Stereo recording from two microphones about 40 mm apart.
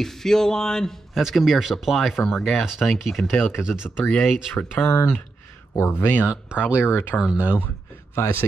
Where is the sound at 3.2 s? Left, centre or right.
Left.